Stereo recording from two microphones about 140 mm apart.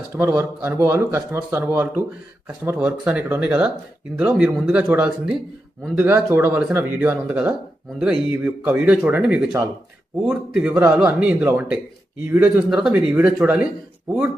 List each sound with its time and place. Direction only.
0.2 s speech: 15° right (ahead or behind)